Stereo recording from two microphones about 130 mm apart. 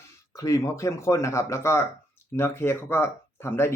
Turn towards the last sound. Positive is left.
turn(degrees=20)  # may be behind; listen again after turning